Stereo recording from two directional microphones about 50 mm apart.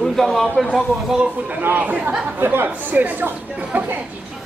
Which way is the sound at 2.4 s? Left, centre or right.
Right.